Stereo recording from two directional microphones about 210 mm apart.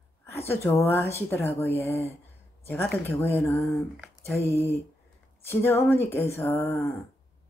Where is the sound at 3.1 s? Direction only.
10° left (ahead or behind).